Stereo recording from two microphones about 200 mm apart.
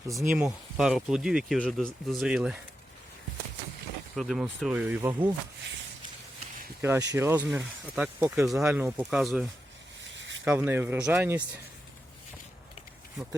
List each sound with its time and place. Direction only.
0.1 s speech: centre (ahead or behind)
4.1 s speech: centre (ahead or behind)
6.8 s speech: 15° right (ahead or behind)
10.0 s a sound: 65° right (ahead or behind)
10.4 s speech: 5° right (ahead or behind)